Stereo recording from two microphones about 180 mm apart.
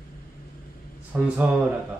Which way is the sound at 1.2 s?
5° right (ahead or behind).